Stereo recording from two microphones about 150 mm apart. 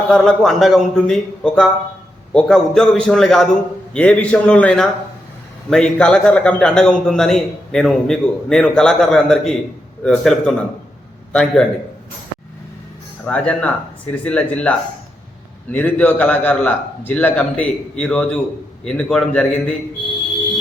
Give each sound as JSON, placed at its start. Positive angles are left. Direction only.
{"t": 0.1, "sound": "a man's voice", "side_deg": 0}
{"t": 13.2, "sound": "a man's voice", "side_deg": 10}